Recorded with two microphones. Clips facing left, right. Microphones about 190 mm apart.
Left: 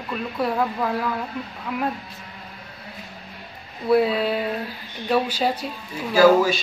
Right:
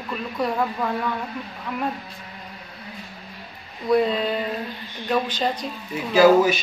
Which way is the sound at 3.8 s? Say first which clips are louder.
Left 1 dB; 5° left (ahead or behind).